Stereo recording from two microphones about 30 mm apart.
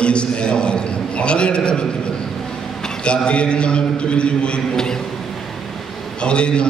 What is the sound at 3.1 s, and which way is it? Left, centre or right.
A man's voice, left.